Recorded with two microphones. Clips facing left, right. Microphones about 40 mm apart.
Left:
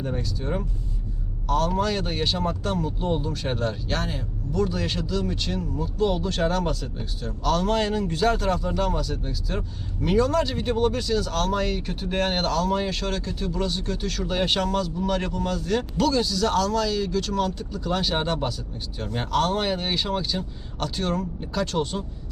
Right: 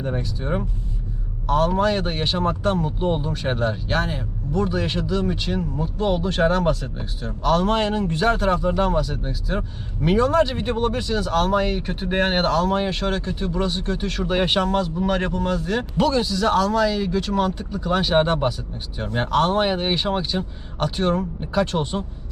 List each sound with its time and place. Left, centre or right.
0.0 s speech: right